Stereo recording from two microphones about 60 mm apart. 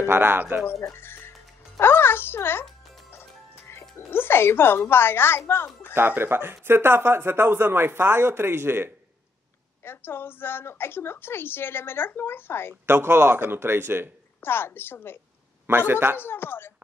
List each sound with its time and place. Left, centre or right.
0.0 s speech: right
0.9 s music: left
1.8 s a woman's voice: left
3.1 s music: left
3.9 s a woman's voice: left
5.9 s speech: right
9.8 s a woman's voice: left
12.8 s speech: right
14.4 s a woman's voice: left
15.6 s speech: right
16.2 s a woman's voice: left